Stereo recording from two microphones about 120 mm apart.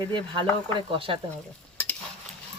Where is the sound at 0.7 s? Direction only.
45° right (ahead or behind).